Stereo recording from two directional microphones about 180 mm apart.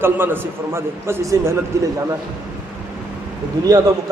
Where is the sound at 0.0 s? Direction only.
10° right (ahead or behind).